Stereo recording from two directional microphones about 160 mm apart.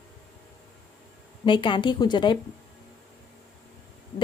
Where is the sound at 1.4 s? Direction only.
30° left (ahead or behind).